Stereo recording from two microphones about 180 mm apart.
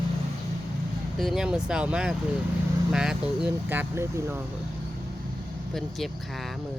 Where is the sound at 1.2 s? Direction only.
Centre (ahead or behind).